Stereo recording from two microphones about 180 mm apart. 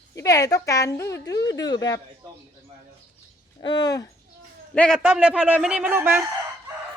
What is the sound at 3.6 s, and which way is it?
Speech, 25° left (ahead or behind).